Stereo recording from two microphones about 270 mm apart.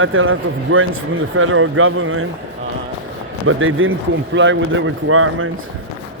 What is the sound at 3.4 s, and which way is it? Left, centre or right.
A man's voice, right.